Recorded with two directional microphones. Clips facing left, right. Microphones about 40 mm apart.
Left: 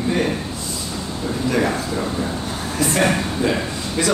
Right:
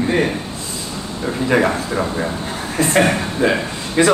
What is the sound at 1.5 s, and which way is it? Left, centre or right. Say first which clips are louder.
Speech: right 4 dB; right.